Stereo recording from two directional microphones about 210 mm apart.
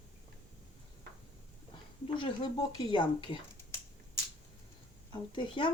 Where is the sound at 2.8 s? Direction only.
20° left (ahead or behind).